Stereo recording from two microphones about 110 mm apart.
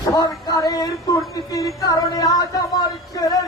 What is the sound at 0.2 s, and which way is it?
Speech, 35° left (ahead or behind).